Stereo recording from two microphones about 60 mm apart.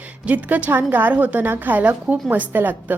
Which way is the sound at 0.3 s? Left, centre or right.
Right.